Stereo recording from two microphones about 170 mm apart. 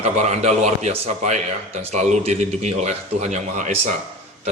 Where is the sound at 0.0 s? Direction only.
40° right (ahead or behind).